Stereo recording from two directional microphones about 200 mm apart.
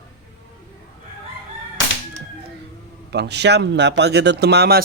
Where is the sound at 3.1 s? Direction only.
55° right (ahead or behind).